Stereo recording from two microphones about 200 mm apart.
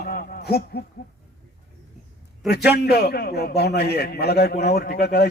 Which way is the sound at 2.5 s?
55° left (ahead or behind).